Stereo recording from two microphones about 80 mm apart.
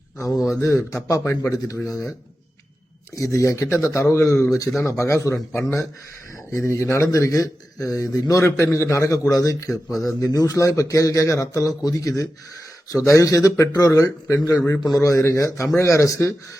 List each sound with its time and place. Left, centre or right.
0.2 s a man's voice: left
3.2 s a man's voice: left
6.5 s a man's voice: left
9.9 s speech: centre
10.2 s a man's voice: left